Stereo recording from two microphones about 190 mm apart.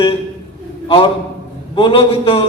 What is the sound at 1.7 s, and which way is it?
Speech, 25° left (ahead or behind).